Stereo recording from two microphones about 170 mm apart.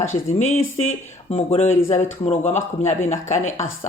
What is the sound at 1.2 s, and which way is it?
A woman's voice, 40° left (ahead or behind).